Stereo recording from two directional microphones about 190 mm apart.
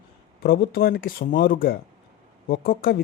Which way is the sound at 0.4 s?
50° left (ahead or behind).